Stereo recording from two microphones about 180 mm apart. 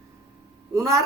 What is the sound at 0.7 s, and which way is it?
Speech, 15° right (ahead or behind).